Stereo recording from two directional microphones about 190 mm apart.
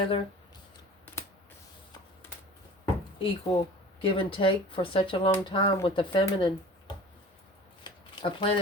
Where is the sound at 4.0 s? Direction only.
25° left (ahead or behind).